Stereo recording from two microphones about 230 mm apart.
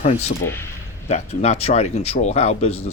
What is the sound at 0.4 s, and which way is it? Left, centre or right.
Speech, centre.